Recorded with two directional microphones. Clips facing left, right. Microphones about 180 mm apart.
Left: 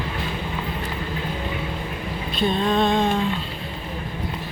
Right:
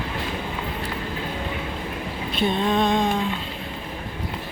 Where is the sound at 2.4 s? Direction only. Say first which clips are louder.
Left 1 dB; 20° right (ahead or behind).